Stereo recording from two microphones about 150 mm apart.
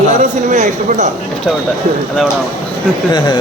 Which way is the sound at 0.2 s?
55° right (ahead or behind).